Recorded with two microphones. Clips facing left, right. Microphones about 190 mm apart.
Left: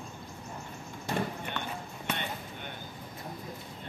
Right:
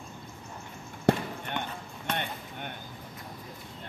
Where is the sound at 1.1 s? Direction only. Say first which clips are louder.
Right 7 dB; 70° right (ahead or behind).